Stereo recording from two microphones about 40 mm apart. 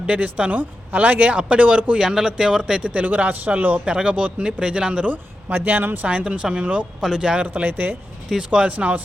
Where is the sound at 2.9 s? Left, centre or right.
Right.